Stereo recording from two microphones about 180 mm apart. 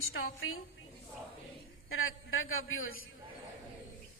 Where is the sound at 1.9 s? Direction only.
90° left.